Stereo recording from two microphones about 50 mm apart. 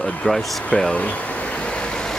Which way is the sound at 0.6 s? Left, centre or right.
Left.